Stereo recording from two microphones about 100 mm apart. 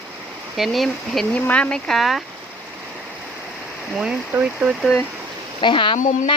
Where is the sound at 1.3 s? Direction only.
10° left (ahead or behind).